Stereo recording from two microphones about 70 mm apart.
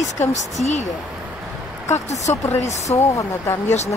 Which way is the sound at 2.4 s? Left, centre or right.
Left.